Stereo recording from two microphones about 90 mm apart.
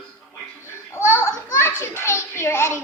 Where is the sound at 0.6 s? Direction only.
30° left (ahead or behind).